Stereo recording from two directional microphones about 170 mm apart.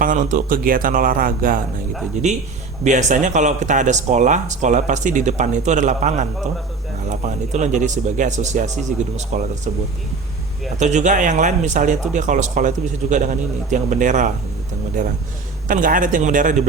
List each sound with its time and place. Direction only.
0.0 s a man's voice: 50° right (ahead or behind)
2.8 s speech: 45° right (ahead or behind)
10.8 s speech: 45° right (ahead or behind)